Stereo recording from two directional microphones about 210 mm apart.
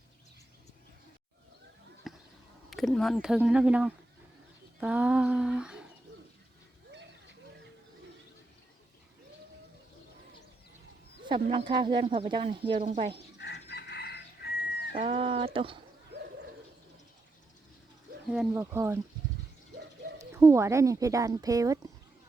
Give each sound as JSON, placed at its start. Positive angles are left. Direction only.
{"t": 2.0, "sound": "basketball bounce", "side_deg": 0}
{"t": 2.6, "sound": "speech", "side_deg": 0}
{"t": 11.5, "sound": "speech", "side_deg": -20}
{"t": 13.4, "sound": "chicken", "side_deg": 55}
{"t": 14.9, "sound": "speech", "side_deg": -25}
{"t": 18.3, "sound": "speech", "side_deg": -10}
{"t": 20.1, "sound": "speech", "side_deg": -15}